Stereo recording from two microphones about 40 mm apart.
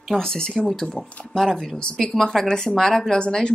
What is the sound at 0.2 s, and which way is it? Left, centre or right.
Speech, centre.